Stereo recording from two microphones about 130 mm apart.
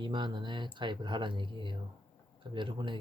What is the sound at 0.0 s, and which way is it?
Speech, 35° right (ahead or behind).